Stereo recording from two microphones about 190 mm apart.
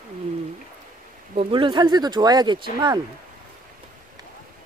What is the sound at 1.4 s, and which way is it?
Speech, 25° right (ahead or behind).